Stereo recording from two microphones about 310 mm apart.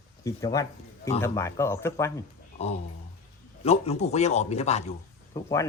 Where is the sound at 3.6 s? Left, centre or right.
Centre.